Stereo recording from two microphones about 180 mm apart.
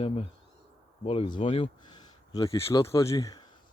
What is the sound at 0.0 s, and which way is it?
Speech, 35° left (ahead or behind).